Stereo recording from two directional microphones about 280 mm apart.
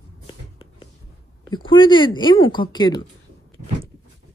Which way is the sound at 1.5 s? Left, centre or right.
Centre.